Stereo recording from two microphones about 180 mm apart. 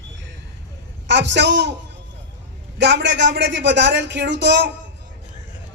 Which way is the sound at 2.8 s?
75° right (ahead or behind).